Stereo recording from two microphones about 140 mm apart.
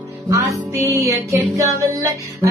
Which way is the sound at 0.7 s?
20° right (ahead or behind).